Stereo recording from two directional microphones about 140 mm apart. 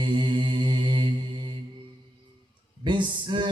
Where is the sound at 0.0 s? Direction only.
35° right (ahead or behind).